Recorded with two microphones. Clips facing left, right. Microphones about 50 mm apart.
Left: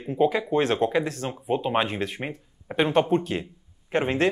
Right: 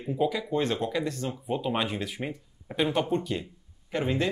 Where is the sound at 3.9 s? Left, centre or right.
Left.